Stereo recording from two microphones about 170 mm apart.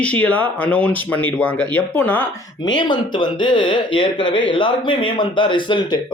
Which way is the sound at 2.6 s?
25° left (ahead or behind).